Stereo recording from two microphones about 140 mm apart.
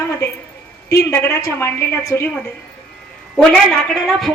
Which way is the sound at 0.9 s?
15° left (ahead or behind).